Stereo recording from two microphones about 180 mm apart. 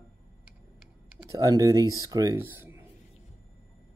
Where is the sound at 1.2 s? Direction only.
20° right (ahead or behind).